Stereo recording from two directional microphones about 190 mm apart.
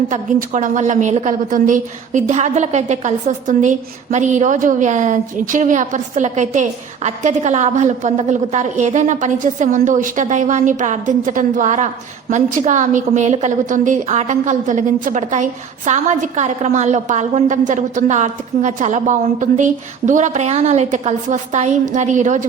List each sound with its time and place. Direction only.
0.1 s a woman's voice: 40° right (ahead or behind)